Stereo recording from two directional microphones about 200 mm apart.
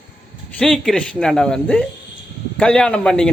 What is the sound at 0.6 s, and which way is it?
Speech, centre (ahead or behind).